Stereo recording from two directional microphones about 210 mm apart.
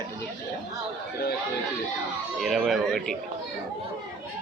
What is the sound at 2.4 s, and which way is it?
Speech, centre (ahead or behind).